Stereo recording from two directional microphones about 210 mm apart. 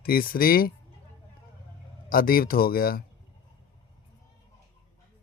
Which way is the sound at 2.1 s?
40° left (ahead or behind).